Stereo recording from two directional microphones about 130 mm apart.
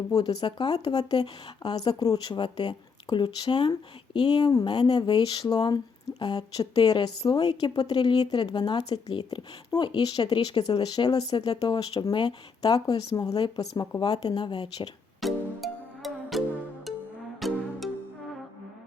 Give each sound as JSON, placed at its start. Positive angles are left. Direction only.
{"t": 0.1, "sound": "speech", "side_deg": 30}
{"t": 15.2, "sound": "music", "side_deg": 0}